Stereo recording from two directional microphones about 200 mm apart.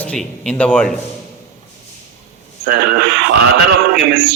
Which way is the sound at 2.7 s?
60° right (ahead or behind).